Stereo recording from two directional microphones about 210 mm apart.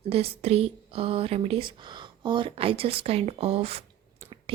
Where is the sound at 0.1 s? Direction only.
30° right (ahead or behind).